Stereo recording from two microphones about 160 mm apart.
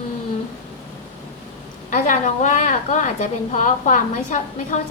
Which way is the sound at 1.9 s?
50° left (ahead or behind).